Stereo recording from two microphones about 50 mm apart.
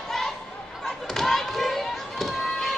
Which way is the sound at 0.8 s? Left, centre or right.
Centre.